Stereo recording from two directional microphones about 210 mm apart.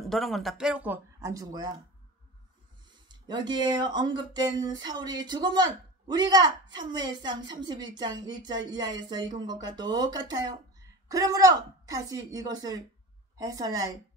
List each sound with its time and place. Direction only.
0.1 s a woman's voice: centre (ahead or behind); by 1.7 s 15° right (ahead or behind)
3.1 s a woman's voice: 20° right (ahead or behind)